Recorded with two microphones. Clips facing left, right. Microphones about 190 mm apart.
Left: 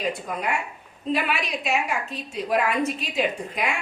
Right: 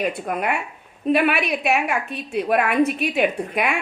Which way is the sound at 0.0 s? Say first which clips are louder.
Right 4 dB; 60° right (ahead or behind).